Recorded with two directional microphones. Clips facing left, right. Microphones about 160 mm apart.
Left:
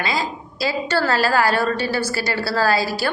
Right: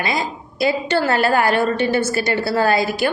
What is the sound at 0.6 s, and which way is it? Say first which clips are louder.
A woman's voice: right 3 dB; 20° right (ahead or behind).